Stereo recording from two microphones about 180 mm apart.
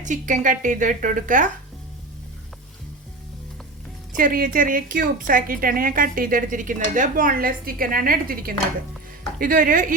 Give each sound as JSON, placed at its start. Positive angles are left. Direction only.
{"t": 0.0, "sound": "a woman's voice", "side_deg": -45}
{"t": 4.2, "sound": "a woman's voice", "side_deg": -50}